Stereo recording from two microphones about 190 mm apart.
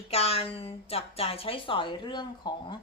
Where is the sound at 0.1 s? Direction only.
30° left (ahead or behind).